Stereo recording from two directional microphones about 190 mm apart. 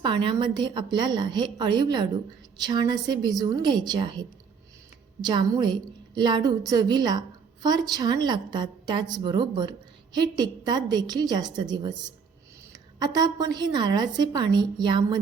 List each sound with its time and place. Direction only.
0.0 s a woman's voice: 25° right (ahead or behind)